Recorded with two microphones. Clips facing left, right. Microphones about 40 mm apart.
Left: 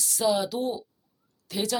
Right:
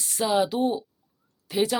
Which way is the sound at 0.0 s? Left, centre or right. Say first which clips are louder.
Right 2 dB; right.